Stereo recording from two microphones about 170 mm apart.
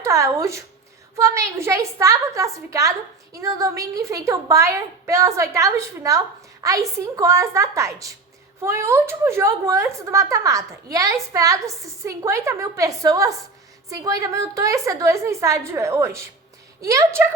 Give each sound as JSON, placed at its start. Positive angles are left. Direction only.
{"t": 0.0, "sound": "a woman's voice", "side_deg": -15}